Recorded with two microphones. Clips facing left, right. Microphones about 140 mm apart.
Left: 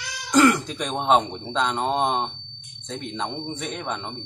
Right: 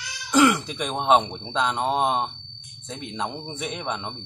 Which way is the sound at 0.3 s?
5° right (ahead or behind).